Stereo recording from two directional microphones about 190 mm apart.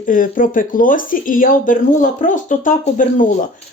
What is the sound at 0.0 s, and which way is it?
Speech, 45° left (ahead or behind).